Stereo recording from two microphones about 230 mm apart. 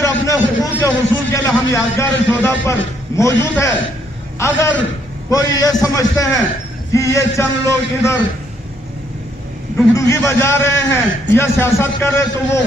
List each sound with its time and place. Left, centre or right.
0.0 s a man's voice: centre
9.9 s a man's voice: centre